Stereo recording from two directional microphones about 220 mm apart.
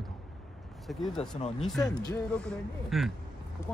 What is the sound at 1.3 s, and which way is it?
Speech, 30° left (ahead or behind).